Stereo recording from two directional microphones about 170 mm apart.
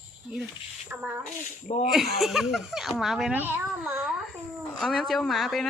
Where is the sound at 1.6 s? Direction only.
45° left (ahead or behind).